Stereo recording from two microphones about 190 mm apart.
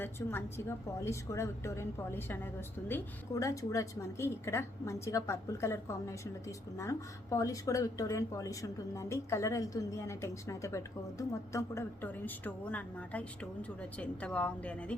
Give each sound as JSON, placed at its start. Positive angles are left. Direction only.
{"t": 0.0, "sound": "a woman's voice", "side_deg": 10}